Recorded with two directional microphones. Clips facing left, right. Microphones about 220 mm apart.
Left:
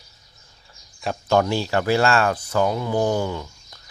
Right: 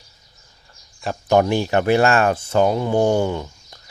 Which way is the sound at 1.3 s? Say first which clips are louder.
Right 3 dB; 15° right (ahead or behind).